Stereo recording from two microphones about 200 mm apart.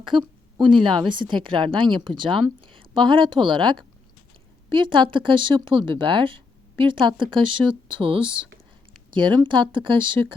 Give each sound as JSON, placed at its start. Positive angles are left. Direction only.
{"t": 0.0, "sound": "a woman's voice", "side_deg": -25}